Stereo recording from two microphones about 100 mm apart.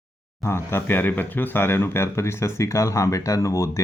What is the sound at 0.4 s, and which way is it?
Mantra, 25° left (ahead or behind).